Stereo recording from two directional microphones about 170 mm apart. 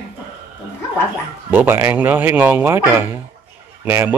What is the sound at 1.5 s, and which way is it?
Speech, 10° right (ahead or behind).